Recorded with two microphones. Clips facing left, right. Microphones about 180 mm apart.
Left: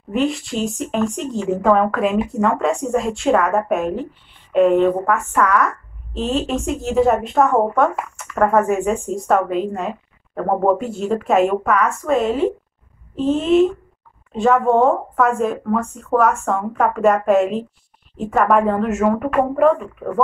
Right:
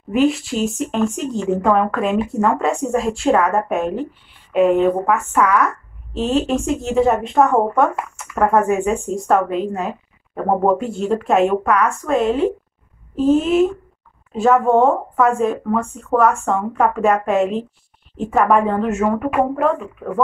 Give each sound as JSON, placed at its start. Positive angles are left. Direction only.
{"t": 0.1, "sound": "speech", "side_deg": 0}